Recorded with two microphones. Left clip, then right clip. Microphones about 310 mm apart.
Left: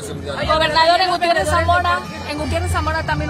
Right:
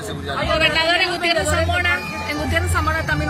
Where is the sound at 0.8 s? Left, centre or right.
Left.